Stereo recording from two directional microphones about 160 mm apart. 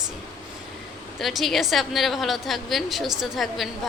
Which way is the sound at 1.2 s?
Centre (ahead or behind).